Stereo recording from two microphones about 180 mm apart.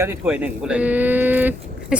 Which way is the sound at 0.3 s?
5° right (ahead or behind).